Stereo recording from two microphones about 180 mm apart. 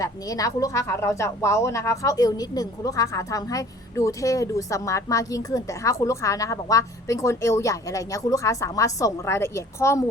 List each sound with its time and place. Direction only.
0.0 s speech: 20° left (ahead or behind)